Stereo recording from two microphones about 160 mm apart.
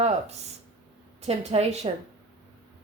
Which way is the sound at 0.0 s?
40° right (ahead or behind).